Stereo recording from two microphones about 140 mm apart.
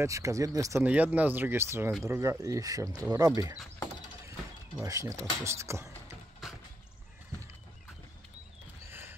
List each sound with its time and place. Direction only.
0.0 s speech: 20° right (ahead or behind)
0.8 s speech: 10° right (ahead or behind)
4.8 s speech: 25° right (ahead or behind)
6.4 s a sound: centre (ahead or behind)